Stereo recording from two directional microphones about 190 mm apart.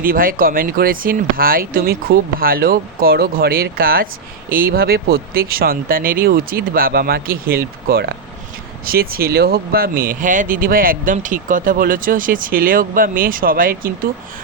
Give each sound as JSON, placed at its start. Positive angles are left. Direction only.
{"t": 0.0, "sound": "speech", "side_deg": -50}